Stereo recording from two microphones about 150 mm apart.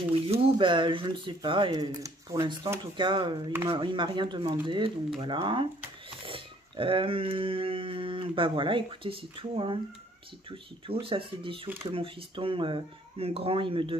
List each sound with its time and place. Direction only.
0.1 s speech: 40° right (ahead or behind)